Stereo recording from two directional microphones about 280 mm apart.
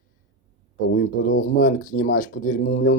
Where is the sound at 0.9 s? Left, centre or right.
Left.